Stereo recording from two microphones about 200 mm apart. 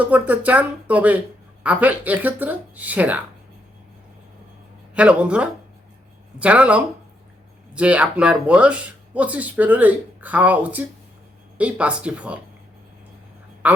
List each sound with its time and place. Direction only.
0.0 s speech: 10° right (ahead or behind)
4.9 s speech: 5° right (ahead or behind)
13.6 s a woman's voice: 5° right (ahead or behind)